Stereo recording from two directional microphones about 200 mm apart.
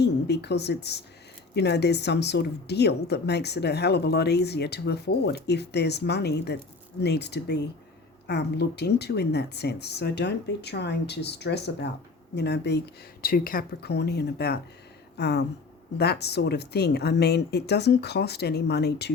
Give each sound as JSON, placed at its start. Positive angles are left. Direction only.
{"t": 0.0, "sound": "a woman's voice", "side_deg": 55}